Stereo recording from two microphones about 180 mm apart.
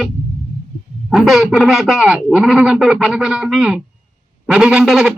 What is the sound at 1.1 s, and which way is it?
Speech, centre (ahead or behind).